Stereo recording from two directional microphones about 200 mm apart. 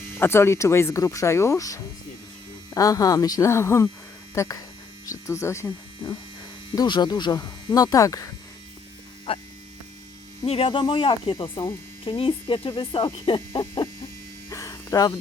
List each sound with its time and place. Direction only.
0.2 s speech: 10° left (ahead or behind)
5.0 s speech: 15° left (ahead or behind)
9.3 s speech: 30° left (ahead or behind)
14.5 s electric shaver: 15° left (ahead or behind)